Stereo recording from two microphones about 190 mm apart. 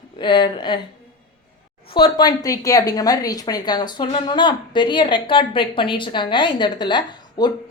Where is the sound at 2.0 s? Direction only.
25° left (ahead or behind).